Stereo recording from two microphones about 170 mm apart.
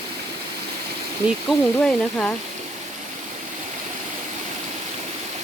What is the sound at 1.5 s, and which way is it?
Speech, 5° left (ahead or behind).